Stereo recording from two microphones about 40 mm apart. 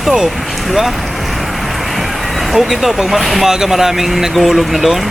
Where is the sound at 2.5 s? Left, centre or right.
Centre.